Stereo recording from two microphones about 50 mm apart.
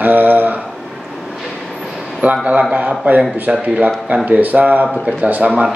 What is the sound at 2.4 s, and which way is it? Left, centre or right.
Speech, right.